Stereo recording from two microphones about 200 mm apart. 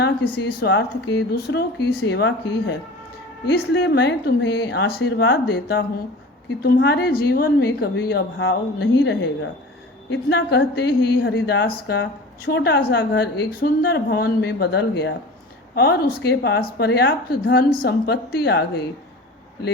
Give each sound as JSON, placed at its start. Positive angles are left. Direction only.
{"t": 0.0, "sound": "a woman's voice", "side_deg": 55}